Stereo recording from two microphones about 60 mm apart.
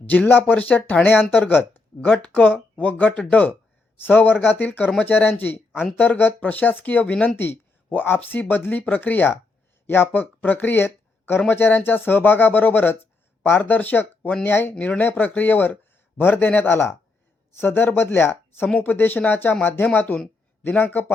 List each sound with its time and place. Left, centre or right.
0.0 s speech: left
7.3 s a man's voice: left
18.7 s speech: left